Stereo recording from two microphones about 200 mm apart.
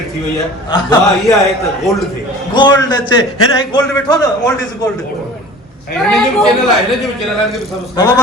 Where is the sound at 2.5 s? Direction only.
20° left (ahead or behind).